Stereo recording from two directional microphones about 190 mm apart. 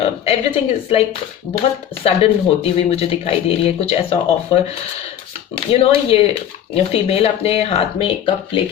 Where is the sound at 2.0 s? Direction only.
30° left (ahead or behind).